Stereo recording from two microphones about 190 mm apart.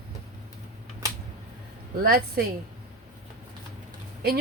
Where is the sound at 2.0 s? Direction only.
55° right (ahead or behind).